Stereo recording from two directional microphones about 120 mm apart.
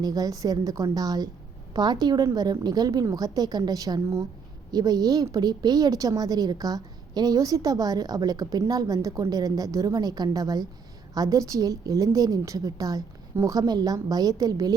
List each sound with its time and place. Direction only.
0.0 s a woman's voice: 30° right (ahead or behind)